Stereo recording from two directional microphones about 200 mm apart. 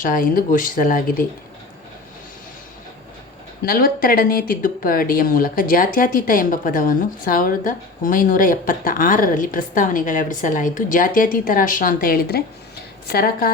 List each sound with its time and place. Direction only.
0.0 s speech: 40° left (ahead or behind)
3.6 s speech: 45° left (ahead or behind)